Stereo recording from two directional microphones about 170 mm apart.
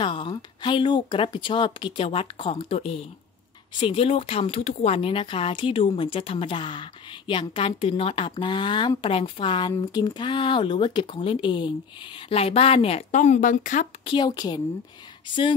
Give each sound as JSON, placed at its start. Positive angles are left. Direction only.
{"t": 0.0, "sound": "speech", "side_deg": 30}
{"t": 14.0, "sound": "a woman's voice", "side_deg": 25}